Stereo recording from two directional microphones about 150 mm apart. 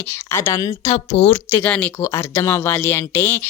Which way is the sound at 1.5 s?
10° left (ahead or behind).